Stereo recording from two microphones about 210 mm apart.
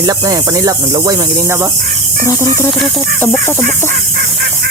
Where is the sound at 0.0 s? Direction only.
15° right (ahead or behind).